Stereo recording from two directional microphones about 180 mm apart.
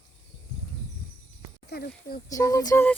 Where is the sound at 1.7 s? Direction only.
55° left (ahead or behind).